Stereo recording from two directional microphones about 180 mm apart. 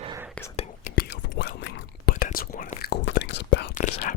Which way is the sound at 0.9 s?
65° left (ahead or behind).